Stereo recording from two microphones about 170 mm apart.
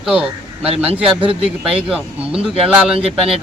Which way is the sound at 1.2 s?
35° right (ahead or behind).